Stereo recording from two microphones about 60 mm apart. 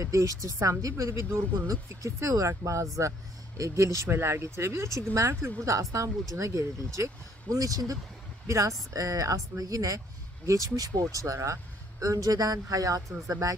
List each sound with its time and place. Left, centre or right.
0.0 s speech: right
1.9 s speech: right
8.5 s speech: right
8.9 s speech: right